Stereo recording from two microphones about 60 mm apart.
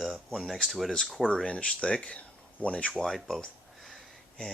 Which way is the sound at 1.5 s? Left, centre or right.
Centre.